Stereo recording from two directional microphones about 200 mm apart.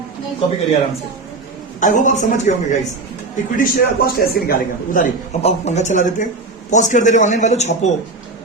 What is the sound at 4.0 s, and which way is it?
Speech, 50° left (ahead or behind).